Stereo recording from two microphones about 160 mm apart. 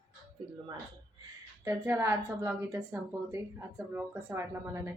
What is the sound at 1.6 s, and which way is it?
A woman's voice, 20° right (ahead or behind).